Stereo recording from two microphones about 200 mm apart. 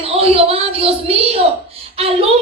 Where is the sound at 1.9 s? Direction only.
30° right (ahead or behind).